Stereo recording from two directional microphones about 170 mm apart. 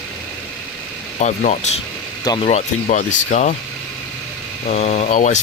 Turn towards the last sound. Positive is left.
turn(degrees=45)  # may be behind; listen again after turning